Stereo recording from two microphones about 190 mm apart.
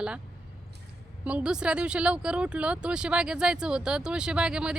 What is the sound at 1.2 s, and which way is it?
Speech, 5° right (ahead or behind).